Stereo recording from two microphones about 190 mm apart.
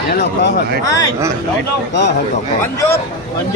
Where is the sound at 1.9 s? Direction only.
65° left (ahead or behind).